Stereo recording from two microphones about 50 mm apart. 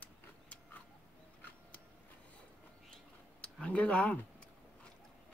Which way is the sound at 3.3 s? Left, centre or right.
Left.